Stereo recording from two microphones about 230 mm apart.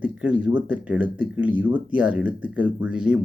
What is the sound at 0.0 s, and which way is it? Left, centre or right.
Speech, centre.